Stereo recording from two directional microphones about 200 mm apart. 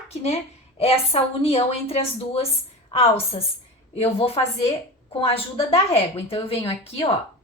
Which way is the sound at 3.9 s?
30° left (ahead or behind).